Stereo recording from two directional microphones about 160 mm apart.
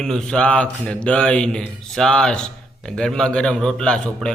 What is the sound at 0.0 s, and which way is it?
A man's voice, 5° left (ahead or behind).